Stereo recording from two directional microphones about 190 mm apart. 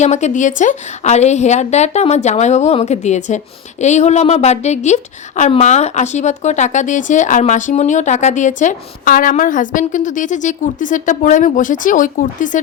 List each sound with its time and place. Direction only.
0.0 s speech: 35° left (ahead or behind)